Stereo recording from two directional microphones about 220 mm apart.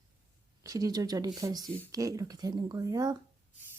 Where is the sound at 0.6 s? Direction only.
15° right (ahead or behind).